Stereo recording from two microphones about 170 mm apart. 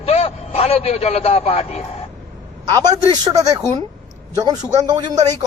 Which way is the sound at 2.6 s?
20° right (ahead or behind).